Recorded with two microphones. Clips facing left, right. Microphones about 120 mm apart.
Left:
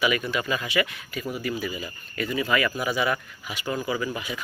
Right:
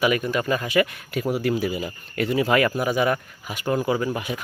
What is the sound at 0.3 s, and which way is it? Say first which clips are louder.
Speech: right 4 dB; 45° right (ahead or behind).